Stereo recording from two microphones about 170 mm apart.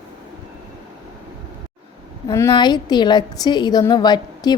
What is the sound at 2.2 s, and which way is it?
A woman's voice, 20° left (ahead or behind).